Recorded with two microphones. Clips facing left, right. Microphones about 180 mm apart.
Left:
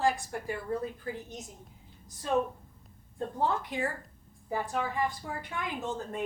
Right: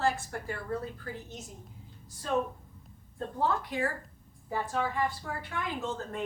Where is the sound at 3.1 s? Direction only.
20° left (ahead or behind).